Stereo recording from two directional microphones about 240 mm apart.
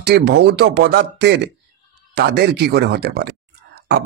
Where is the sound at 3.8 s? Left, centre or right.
Right.